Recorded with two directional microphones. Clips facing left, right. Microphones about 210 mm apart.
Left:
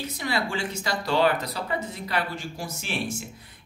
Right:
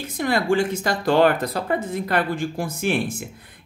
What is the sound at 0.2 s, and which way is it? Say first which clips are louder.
Speech: right 9 dB; 50° right (ahead or behind).